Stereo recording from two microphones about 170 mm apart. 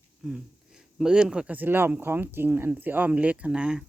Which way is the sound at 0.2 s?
5° right (ahead or behind).